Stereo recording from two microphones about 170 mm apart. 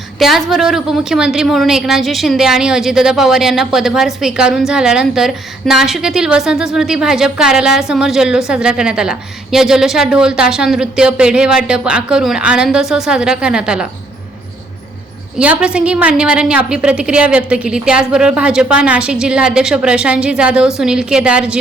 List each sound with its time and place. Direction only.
0.2 s a woman's voice: centre (ahead or behind)
15.4 s a woman's voice: 5° right (ahead or behind)